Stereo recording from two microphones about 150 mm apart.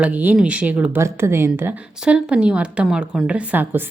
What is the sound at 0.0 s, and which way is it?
Speech, 10° right (ahead or behind).